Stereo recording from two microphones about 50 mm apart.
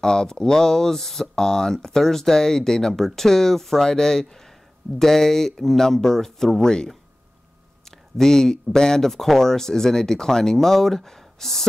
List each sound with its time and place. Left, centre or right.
0.0 s speech: centre
8.2 s speech: centre